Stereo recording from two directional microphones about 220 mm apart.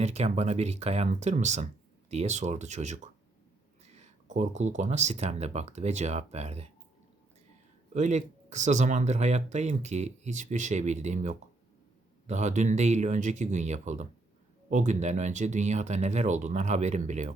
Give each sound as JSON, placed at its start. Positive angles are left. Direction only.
{"t": 0.0, "sound": "speech", "side_deg": -30}
{"t": 7.9, "sound": "speech", "side_deg": -35}